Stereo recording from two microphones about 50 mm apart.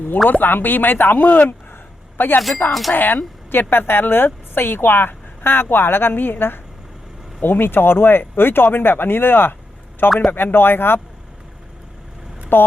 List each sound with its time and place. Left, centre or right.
0.3 s speech: left
12.5 s speech: left